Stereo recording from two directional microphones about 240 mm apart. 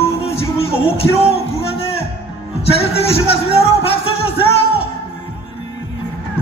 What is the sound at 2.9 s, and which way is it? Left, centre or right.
Speech, left.